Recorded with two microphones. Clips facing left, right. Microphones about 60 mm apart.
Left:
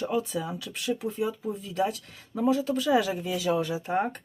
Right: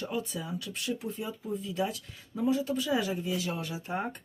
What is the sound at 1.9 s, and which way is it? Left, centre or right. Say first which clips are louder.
Speech: left 4 dB; left.